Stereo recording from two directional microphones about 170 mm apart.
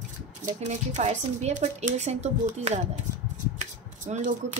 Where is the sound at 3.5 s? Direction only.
45° right (ahead or behind).